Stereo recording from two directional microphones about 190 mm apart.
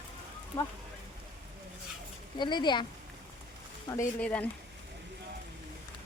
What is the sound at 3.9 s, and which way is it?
Speech, 15° left (ahead or behind).